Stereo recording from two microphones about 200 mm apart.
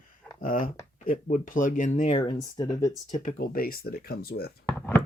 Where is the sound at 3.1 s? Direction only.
45° left (ahead or behind).